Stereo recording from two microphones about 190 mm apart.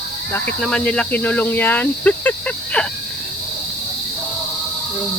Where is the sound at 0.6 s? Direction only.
5° left (ahead or behind).